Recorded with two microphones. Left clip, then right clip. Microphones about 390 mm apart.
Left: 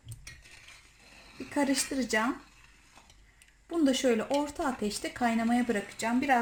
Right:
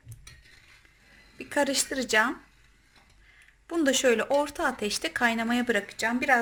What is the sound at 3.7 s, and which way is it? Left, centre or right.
A woman's voice, right.